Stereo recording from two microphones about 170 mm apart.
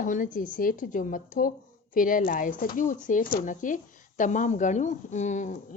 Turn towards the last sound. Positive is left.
turn(degrees=45)  # may be behind; listen again after turning